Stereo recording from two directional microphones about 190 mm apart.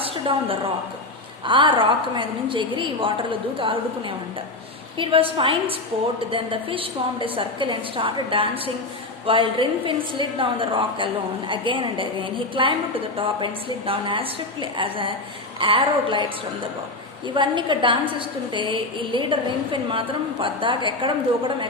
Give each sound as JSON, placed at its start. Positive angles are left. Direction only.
{"t": 0.0, "sound": "a sound", "side_deg": -30}
{"t": 1.5, "sound": "a woman's voice", "side_deg": -25}
{"t": 4.9, "sound": "a woman's voice", "side_deg": -30}
{"t": 17.2, "sound": "a woman's voice", "side_deg": -25}